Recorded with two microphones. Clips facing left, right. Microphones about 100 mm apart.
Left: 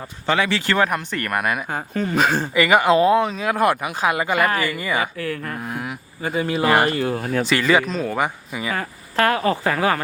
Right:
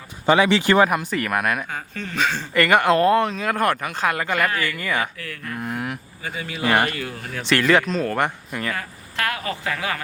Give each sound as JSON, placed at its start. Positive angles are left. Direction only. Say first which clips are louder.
{"t": 0.3, "sound": "speech", "louder": "right 4 dB", "side_deg": -20}
{"t": 0.9, "sound": "speech", "louder": "right 1 dB", "side_deg": -5}
{"t": 2.1, "sound": "speech", "louder": "left 4 dB", "side_deg": 45}
{"t": 2.5, "sound": "speech", "louder": "right 1 dB", "side_deg": 5}
{"t": 5.1, "sound": "speech", "louder": "left 7 dB", "side_deg": 35}
{"t": 5.6, "sound": "a sound", "louder": "right 1 dB", "side_deg": 0}
{"t": 6.2, "sound": "speech", "louder": "left 5 dB", "side_deg": 35}
{"t": 7.4, "sound": "speech", "louder": "right 2 dB", "side_deg": 0}
{"t": 8.7, "sound": "speech", "louder": "left 6 dB", "side_deg": 35}